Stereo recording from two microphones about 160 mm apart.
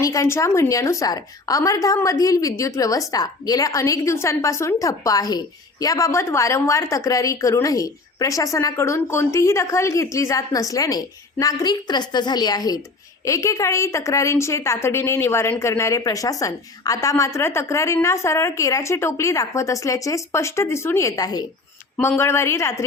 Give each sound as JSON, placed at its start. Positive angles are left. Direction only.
{"t": 0.0, "sound": "a woman's voice", "side_deg": 20}